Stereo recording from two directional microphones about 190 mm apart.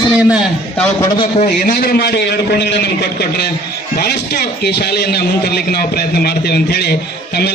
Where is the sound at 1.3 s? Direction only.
40° left (ahead or behind).